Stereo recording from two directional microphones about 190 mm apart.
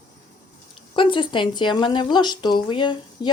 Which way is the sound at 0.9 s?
25° left (ahead or behind).